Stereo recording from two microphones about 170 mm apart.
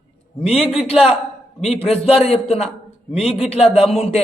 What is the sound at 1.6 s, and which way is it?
A woman's voice, 35° left (ahead or behind).